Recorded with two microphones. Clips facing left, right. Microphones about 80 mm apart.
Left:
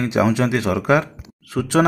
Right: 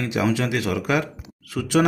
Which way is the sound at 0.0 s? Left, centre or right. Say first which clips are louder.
Left 5 dB; left.